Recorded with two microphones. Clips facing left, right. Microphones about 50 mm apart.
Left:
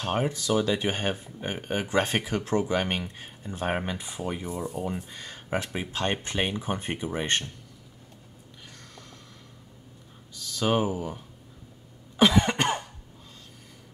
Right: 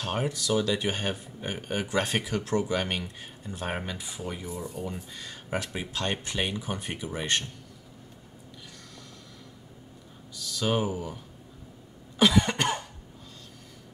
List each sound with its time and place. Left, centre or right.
0.0 s speech: centre
10.5 s speech: left
12.2 s cough: centre